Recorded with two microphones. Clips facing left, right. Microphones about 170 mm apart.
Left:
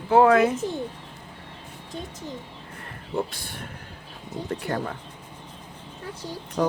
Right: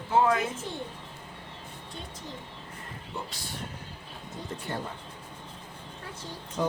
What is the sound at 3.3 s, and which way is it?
Speech, 55° left (ahead or behind).